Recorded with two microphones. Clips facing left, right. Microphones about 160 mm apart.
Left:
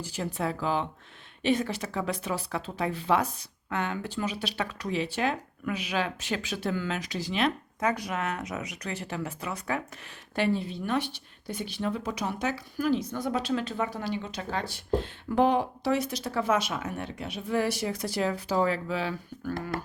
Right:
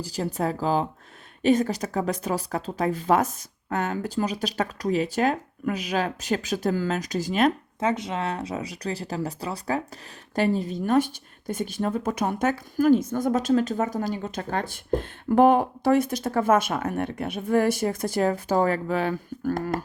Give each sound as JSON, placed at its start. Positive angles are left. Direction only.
{"t": 0.0, "sound": "speech", "side_deg": -35}
{"t": 7.8, "sound": "speech", "side_deg": -25}